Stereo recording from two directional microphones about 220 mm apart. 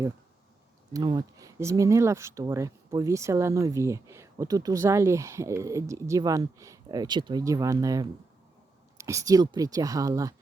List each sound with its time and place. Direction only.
0.9 s speech: 15° right (ahead or behind)